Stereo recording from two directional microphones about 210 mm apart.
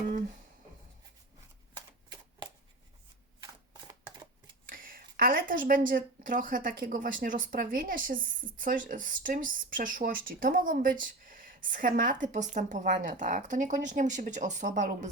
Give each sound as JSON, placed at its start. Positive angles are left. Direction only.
{"t": 1.7, "sound": "typewriter", "side_deg": -20}
{"t": 4.7, "sound": "a woman's voice", "side_deg": -40}